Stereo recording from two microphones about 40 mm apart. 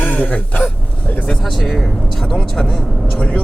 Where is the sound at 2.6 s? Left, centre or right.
Centre.